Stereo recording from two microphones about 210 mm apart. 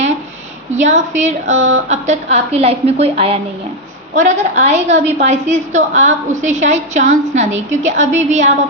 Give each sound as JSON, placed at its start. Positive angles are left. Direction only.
{"t": 0.7, "sound": "a woman's voice", "side_deg": -35}